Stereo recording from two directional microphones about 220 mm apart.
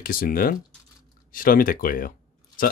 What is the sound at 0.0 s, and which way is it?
Speech, 40° left (ahead or behind).